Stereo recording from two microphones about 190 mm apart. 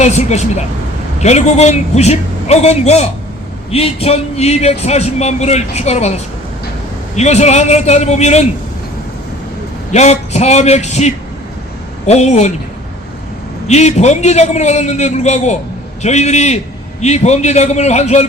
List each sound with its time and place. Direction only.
0.0 s speech: 35° left (ahead or behind)
9.9 s speech: 35° left (ahead or behind)
13.7 s speech: 35° left (ahead or behind)